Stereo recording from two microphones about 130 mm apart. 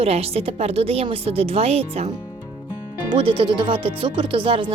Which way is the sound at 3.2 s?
45° right (ahead or behind).